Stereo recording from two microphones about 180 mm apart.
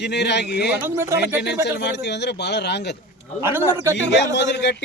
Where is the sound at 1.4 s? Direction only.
70° left (ahead or behind).